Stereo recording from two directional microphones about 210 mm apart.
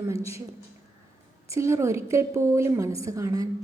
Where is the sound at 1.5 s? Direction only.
15° right (ahead or behind).